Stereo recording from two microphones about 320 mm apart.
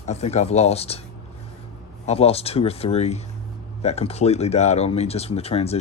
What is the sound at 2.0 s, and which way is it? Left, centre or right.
Speech, centre.